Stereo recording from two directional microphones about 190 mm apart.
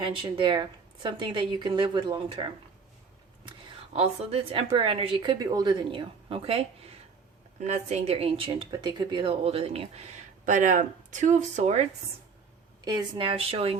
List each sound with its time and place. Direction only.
0.0 s speech: 25° right (ahead or behind)
3.9 s speech: 30° right (ahead or behind)
12.8 s speech: 20° right (ahead or behind)